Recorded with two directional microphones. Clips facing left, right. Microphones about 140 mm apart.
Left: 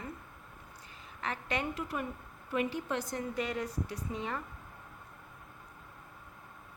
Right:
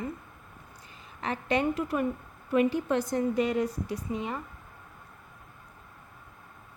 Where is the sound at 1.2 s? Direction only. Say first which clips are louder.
Right 7 dB; 25° right (ahead or behind).